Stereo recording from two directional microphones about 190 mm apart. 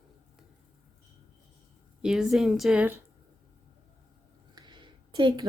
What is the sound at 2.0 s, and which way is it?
Speech, 5° right (ahead or behind).